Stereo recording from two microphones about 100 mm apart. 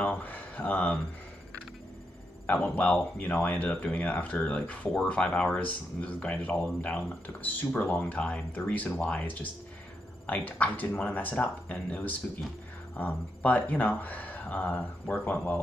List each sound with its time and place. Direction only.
0.0 s speech: 15° left (ahead or behind)
2.4 s speech: 15° left (ahead or behind)